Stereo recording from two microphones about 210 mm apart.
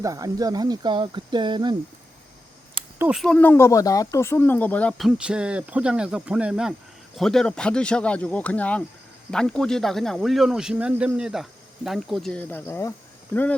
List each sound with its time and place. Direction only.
0.0 s speech: 15° right (ahead or behind)
3.0 s speech: 5° right (ahead or behind)